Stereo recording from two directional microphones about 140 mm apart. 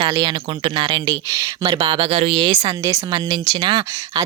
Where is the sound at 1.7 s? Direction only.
40° right (ahead or behind).